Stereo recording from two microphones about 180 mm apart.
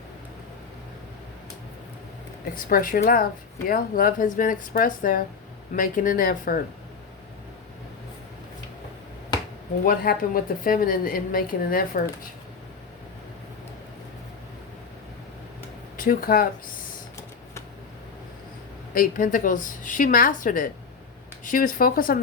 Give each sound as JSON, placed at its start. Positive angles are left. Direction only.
{"t": 2.6, "sound": "a woman's voice", "side_deg": 50}
{"t": 9.8, "sound": "a woman's voice", "side_deg": 50}
{"t": 16.0, "sound": "speech", "side_deg": 55}
{"t": 18.9, "sound": "a woman's voice", "side_deg": 50}